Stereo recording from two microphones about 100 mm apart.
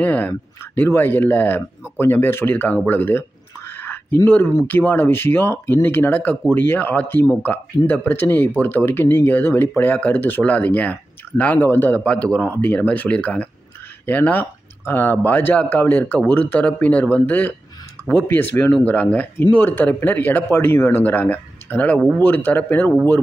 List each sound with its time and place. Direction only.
0.0 s speech: 15° left (ahead or behind)